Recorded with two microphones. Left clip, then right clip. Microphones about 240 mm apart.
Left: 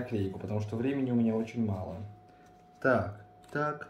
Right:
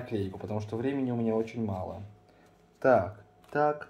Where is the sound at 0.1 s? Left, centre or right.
Right.